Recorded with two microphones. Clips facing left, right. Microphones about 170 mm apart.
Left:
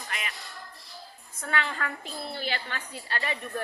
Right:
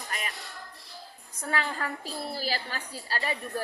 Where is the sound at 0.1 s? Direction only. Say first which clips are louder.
Right 1 dB; 40° right (ahead or behind).